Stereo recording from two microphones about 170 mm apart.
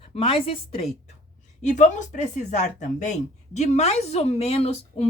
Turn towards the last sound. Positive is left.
turn(degrees=35)  # may be behind; listen again after turning